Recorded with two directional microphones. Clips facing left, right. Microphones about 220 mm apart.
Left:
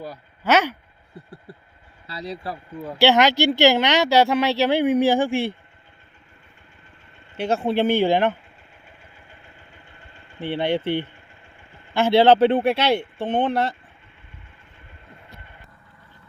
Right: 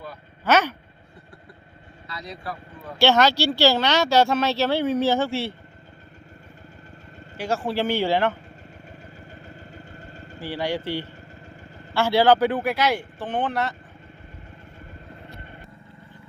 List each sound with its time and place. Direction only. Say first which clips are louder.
0.4 s speech: left 1 dB; 15° left (ahead or behind)
2.0 s speech: left 4 dB; 30° left (ahead or behind)
3.0 s speech: left 2 dB; 15° left (ahead or behind)
7.3 s speech: left 4 dB; 20° left (ahead or behind)
9.5 s vehicle: right 8 dB; 40° right (ahead or behind)
10.4 s speech: left 4 dB; 25° left (ahead or behind)